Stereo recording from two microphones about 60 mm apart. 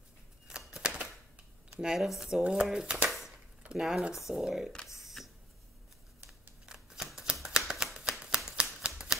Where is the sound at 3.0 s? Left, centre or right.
Centre.